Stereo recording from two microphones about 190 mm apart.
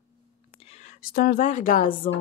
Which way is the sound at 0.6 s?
35° left (ahead or behind).